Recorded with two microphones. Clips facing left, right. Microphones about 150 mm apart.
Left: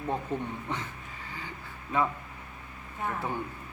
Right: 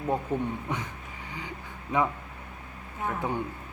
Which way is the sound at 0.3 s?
10° right (ahead or behind).